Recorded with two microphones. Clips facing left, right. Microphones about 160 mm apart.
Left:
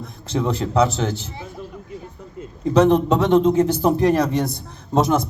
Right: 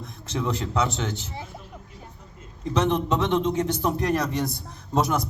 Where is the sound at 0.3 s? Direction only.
30° left (ahead or behind).